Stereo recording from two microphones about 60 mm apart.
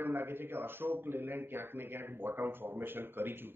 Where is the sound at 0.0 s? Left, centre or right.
Right.